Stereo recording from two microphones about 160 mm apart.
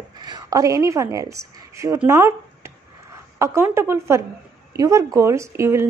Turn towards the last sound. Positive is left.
turn(degrees=-15)  # may be behind; listen again after turning